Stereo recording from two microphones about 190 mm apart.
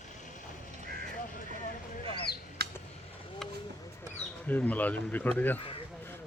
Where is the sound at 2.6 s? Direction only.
60° right (ahead or behind).